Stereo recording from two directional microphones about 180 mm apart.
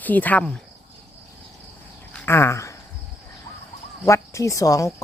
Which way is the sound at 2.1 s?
10° left (ahead or behind).